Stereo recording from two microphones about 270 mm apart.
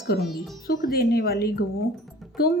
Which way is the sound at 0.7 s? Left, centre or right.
Left.